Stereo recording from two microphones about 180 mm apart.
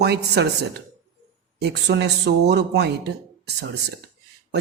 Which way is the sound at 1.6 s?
70° right (ahead or behind).